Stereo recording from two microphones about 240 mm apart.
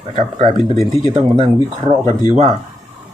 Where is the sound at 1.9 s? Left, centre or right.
Right.